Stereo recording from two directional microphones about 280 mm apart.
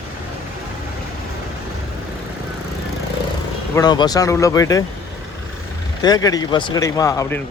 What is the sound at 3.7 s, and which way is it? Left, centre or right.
Speech, centre.